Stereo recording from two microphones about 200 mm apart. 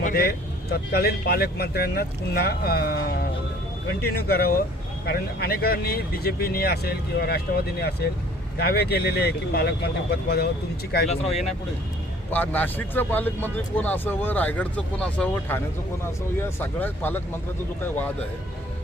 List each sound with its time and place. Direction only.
0.0 s speech: 45° left (ahead or behind)
12.3 s speech: 10° left (ahead or behind)